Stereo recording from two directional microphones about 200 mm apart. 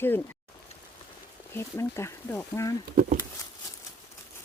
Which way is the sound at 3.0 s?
40° right (ahead or behind).